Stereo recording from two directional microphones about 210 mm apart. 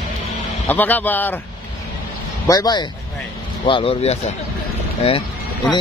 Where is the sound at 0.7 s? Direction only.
10° left (ahead or behind).